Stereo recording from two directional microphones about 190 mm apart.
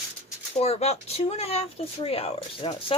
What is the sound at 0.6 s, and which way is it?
Speech, 35° left (ahead or behind).